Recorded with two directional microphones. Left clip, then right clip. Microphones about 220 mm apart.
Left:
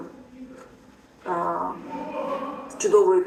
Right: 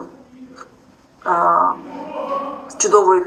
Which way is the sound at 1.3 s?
15° right (ahead or behind).